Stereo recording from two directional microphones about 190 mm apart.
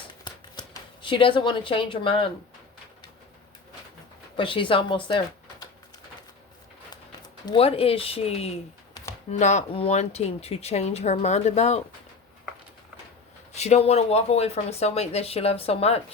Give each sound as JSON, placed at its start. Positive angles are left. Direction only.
{"t": 0.3, "sound": "shuffling cards", "side_deg": 25}
{"t": 4.4, "sound": "speech", "side_deg": 25}
{"t": 7.4, "sound": "speech", "side_deg": 30}
{"t": 13.5, "sound": "speech", "side_deg": 35}